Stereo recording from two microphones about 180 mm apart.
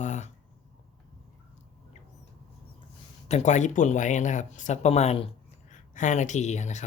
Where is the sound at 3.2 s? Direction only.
40° left (ahead or behind).